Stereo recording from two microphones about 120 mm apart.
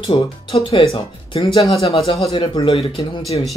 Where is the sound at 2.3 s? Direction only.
40° left (ahead or behind).